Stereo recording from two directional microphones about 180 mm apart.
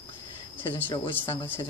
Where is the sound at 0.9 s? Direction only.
25° left (ahead or behind).